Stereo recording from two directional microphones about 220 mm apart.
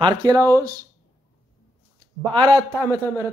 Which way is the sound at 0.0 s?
20° right (ahead or behind).